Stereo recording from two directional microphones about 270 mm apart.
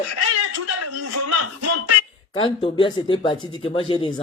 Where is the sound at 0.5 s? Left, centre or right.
Right.